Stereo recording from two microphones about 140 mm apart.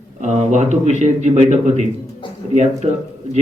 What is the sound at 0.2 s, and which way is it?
A man's voice, 55° right (ahead or behind).